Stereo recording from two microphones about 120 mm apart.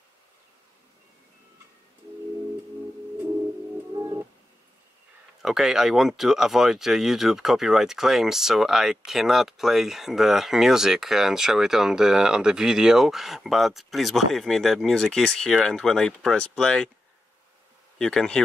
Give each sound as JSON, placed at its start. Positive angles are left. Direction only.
{"t": 3.9, "sound": "telephone dialing", "side_deg": -35}
{"t": 5.4, "sound": "speech", "side_deg": -5}
{"t": 17.9, "sound": "speech", "side_deg": 5}